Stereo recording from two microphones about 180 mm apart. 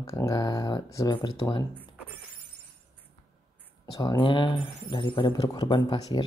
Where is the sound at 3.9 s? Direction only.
25° left (ahead or behind).